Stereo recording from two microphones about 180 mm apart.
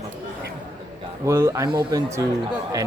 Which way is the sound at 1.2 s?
15° right (ahead or behind).